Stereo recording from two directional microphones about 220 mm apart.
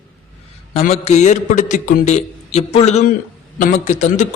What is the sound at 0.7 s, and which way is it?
A man's voice, 30° left (ahead or behind).